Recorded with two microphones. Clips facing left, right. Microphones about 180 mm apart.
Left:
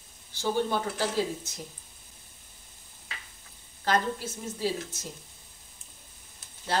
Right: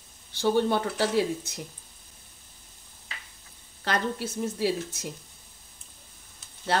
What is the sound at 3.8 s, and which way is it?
A woman's voice, 70° right (ahead or behind).